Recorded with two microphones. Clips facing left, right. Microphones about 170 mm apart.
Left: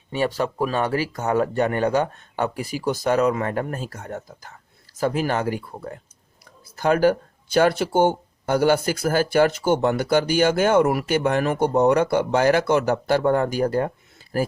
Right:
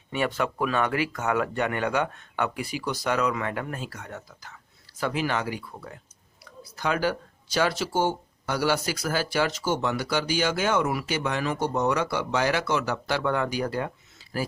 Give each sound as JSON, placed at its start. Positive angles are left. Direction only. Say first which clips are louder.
{"t": 0.1, "sound": "speech", "louder": "left 4 dB", "side_deg": 35}